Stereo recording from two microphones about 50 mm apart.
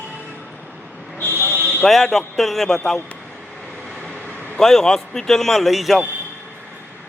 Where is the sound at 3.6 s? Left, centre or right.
Centre.